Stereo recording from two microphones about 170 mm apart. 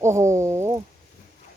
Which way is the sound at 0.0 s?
15° right (ahead or behind).